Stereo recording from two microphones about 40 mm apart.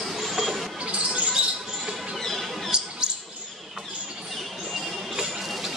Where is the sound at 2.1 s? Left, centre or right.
Centre.